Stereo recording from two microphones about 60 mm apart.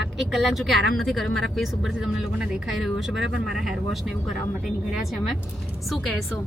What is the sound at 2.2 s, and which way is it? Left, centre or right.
Speech, centre.